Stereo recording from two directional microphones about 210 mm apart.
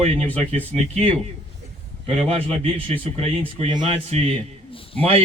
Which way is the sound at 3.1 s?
30° right (ahead or behind).